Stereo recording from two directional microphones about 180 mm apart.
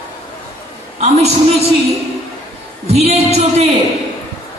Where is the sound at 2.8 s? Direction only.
35° right (ahead or behind).